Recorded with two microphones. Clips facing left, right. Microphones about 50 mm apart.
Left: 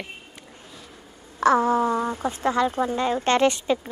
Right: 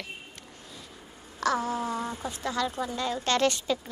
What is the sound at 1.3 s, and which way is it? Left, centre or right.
Speech, left.